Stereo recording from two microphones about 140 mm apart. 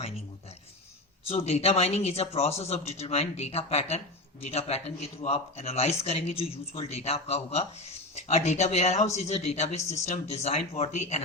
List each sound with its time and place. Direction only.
1.2 s speech: 45° left (ahead or behind)